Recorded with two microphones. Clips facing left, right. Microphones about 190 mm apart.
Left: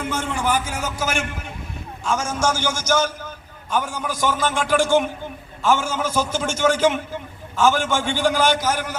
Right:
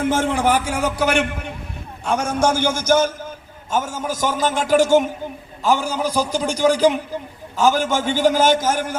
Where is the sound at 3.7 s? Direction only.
45° right (ahead or behind).